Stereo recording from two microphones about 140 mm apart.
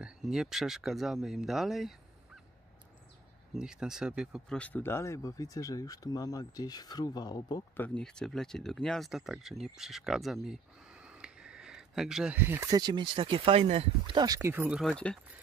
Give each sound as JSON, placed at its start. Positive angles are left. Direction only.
{"t": 0.0, "sound": "speech", "side_deg": -5}
{"t": 3.5, "sound": "speech", "side_deg": -5}
{"t": 4.5, "sound": "speech", "side_deg": 10}
{"t": 7.7, "sound": "speech", "side_deg": 10}
{"t": 9.8, "sound": "a sound", "side_deg": -5}
{"t": 12.4, "sound": "speech", "side_deg": -15}
{"t": 14.5, "sound": "speech", "side_deg": -15}
{"t": 14.8, "sound": "speech", "side_deg": 5}